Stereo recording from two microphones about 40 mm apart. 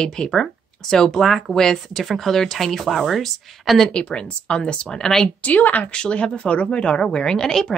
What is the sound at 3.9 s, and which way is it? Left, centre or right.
Speech, left.